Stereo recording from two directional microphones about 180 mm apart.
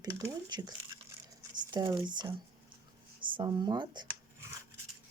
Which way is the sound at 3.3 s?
25° right (ahead or behind).